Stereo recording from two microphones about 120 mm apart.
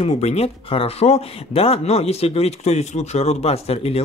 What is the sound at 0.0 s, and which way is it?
A man's voice, 60° left (ahead or behind).